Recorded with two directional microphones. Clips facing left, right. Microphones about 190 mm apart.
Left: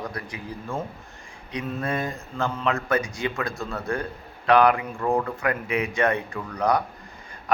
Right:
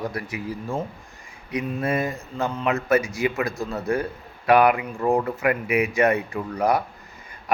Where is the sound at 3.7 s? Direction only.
20° right (ahead or behind).